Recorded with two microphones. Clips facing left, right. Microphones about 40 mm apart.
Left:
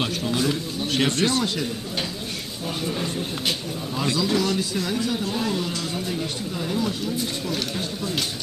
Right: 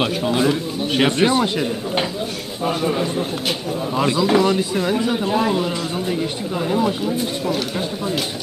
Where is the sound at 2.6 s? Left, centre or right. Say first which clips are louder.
Right 8 dB; right.